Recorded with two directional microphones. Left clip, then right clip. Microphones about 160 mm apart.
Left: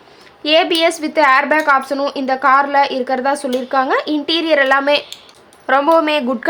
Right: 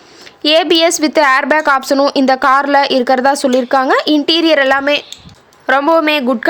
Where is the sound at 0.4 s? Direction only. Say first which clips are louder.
Right 3 dB; 55° right (ahead or behind); by 4.8 s 40° right (ahead or behind).